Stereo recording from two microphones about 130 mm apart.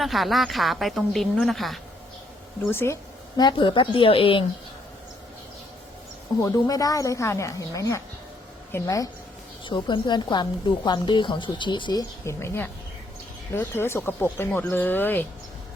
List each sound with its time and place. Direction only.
0.0 s speech: centre (ahead or behind)
2.6 s a woman's voice: 20° left (ahead or behind)
3.3 s speech: 35° left (ahead or behind)
6.4 s a woman's voice: 25° left (ahead or behind)
9.6 s speech: 35° left (ahead or behind); by 15.3 s 15° left (ahead or behind)